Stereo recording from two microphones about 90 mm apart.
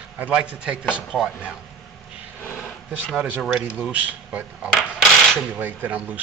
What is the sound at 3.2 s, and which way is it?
Speech, 15° right (ahead or behind).